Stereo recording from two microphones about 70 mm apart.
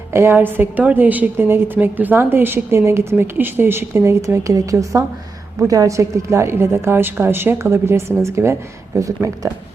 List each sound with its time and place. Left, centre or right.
0.1 s a woman's voice: right
4.5 s a woman's voice: right